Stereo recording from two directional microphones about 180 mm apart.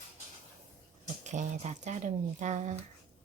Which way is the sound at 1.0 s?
40° right (ahead or behind).